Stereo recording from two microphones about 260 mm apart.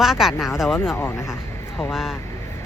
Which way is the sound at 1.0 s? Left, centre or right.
Centre.